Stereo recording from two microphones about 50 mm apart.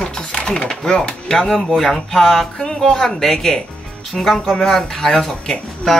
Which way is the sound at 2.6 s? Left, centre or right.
Centre.